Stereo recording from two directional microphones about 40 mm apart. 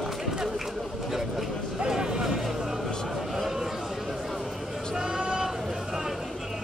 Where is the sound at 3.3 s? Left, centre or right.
Centre.